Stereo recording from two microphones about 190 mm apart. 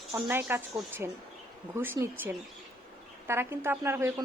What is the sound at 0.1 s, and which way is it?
Speech, 10° right (ahead or behind).